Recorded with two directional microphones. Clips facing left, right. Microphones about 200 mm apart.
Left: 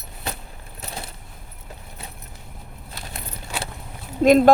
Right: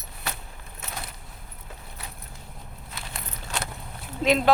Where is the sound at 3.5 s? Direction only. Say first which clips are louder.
Left 2 dB; 10° left (ahead or behind).